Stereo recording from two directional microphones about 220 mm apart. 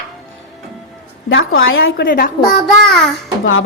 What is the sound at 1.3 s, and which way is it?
Speech, 60° left (ahead or behind).